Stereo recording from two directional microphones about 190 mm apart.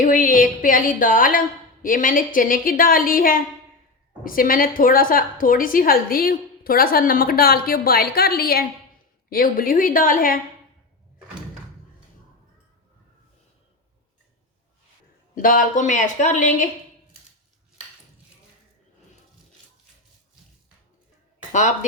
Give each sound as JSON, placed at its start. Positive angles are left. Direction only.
{"t": 0.0, "sound": "a woman's voice", "side_deg": 45}
{"t": 15.4, "sound": "speech", "side_deg": 45}
{"t": 21.5, "sound": "speech", "side_deg": 40}